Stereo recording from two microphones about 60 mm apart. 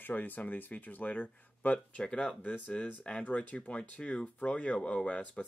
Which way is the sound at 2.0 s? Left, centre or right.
Centre.